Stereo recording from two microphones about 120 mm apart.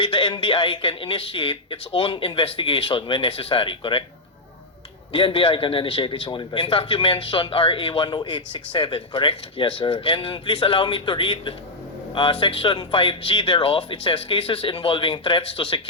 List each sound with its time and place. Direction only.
0.0 s speech: 45° left (ahead or behind)
5.1 s speech: 45° left (ahead or behind)